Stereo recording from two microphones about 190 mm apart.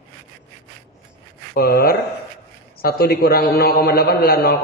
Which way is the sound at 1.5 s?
55° left (ahead or behind).